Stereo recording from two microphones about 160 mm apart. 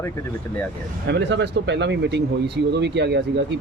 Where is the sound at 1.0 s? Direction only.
90° right.